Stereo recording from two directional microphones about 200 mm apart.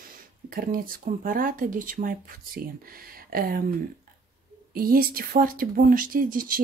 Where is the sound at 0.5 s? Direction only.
45° right (ahead or behind).